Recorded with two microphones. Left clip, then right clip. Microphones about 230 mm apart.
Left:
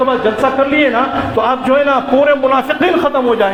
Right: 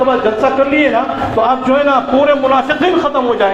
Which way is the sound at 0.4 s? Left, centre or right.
Left.